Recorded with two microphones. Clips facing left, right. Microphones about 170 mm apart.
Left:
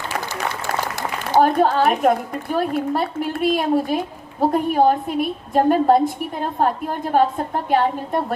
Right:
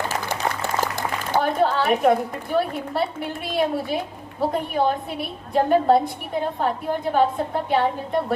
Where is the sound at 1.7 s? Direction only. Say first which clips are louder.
Left 1 dB; 55° left (ahead or behind).